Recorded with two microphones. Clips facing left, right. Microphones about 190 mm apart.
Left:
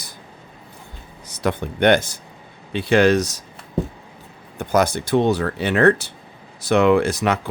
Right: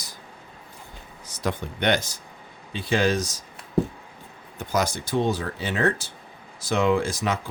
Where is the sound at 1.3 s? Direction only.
65° left (ahead or behind).